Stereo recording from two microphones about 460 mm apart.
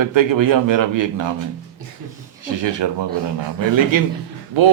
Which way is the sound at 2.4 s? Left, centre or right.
Right.